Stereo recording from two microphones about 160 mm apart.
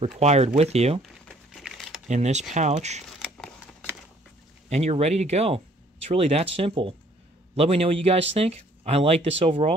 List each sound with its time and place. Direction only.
0.1 s speech: 45° right (ahead or behind)
1.0 s crumpling: centre (ahead or behind)
2.0 s speech: 45° right (ahead or behind)
3.1 s a sound: 5° left (ahead or behind)
4.6 s speech: 40° right (ahead or behind)